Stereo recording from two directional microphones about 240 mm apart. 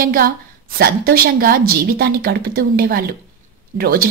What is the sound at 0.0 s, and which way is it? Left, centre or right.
A woman's voice, right.